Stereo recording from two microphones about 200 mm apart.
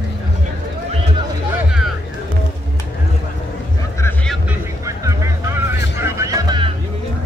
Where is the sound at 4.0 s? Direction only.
10° left (ahead or behind).